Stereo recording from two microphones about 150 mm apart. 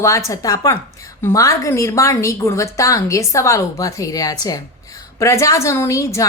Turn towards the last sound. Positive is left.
turn(degrees=20)  # may be behind; listen again after turning